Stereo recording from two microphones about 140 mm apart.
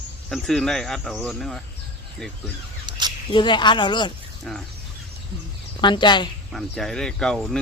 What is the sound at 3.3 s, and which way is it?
Speech, 35° left (ahead or behind).